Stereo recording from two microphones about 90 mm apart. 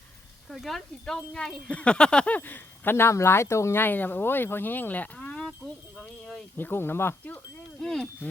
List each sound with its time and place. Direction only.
0.5 s speech: centre (ahead or behind)
6.0 s a sound: 10° left (ahead or behind)
6.6 s speech: 25° left (ahead or behind)
7.8 s speech: 5° left (ahead or behind)